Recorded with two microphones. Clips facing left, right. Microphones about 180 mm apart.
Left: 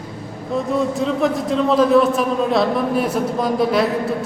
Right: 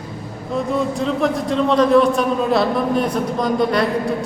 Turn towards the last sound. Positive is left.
turn(degrees=5)  # may be behind; listen again after turning